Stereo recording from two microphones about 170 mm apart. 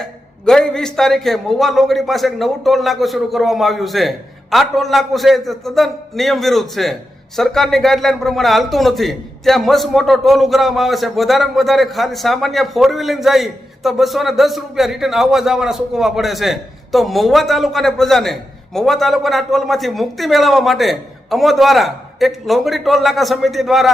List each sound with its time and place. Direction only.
0.0 s a man's voice: 5° left (ahead or behind)